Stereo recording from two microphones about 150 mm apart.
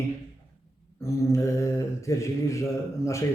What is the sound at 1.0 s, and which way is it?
Mantra, 20° left (ahead or behind).